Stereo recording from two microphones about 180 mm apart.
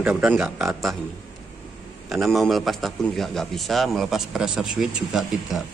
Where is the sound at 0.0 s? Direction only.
5° right (ahead or behind).